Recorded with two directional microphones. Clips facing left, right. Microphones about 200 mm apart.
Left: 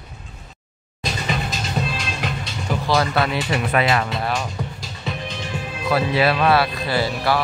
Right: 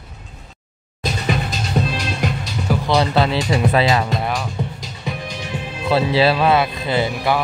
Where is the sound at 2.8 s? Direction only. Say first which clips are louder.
Right 2 dB; 20° right (ahead or behind).